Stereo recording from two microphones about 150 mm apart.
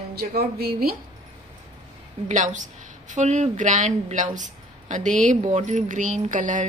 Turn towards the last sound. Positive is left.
turn(degrees=-60)  # may be behind; listen again after turning